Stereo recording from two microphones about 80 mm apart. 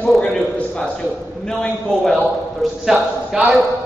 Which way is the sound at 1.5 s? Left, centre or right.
Centre.